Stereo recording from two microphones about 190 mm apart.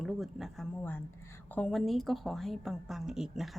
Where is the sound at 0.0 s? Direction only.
Centre (ahead or behind).